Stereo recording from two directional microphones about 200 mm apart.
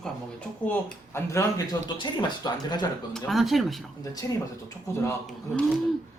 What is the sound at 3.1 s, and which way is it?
Speech, centre (ahead or behind).